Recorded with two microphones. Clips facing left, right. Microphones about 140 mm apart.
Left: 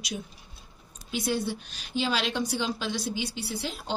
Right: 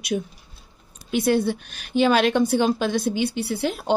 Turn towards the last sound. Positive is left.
turn(degrees=-55)  # may be behind; listen again after turning